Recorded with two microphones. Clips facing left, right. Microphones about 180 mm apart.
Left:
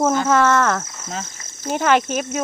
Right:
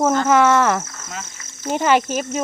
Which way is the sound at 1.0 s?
30° left (ahead or behind).